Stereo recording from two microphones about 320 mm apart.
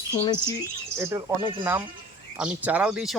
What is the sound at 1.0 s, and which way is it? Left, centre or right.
Speech, centre.